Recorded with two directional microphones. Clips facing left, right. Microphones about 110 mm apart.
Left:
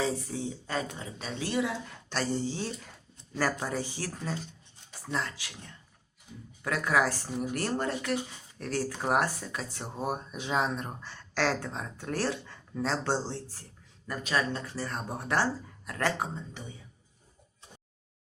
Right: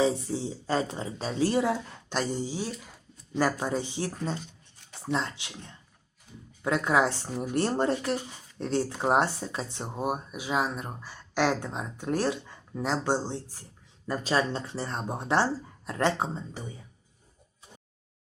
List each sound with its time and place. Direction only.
0.0 s speech: 25° right (ahead or behind)
2.0 s speech: 15° right (ahead or behind)
3.6 s speech: 20° right (ahead or behind)
14.1 s speech: 30° right (ahead or behind)